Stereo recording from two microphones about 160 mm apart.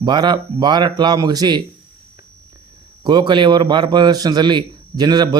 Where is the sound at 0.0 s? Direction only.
25° right (ahead or behind).